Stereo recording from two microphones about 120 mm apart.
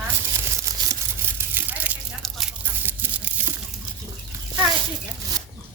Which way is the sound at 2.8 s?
15° right (ahead or behind).